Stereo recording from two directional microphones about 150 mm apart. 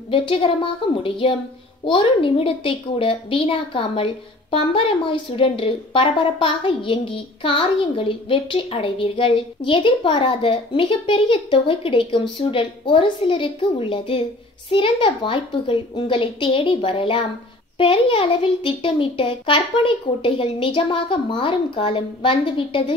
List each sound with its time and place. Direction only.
0.1 s a woman's voice: 35° left (ahead or behind)